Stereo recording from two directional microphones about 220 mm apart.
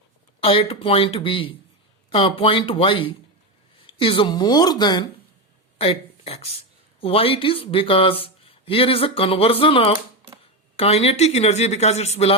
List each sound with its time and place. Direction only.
0.3 s speech: 25° left (ahead or behind)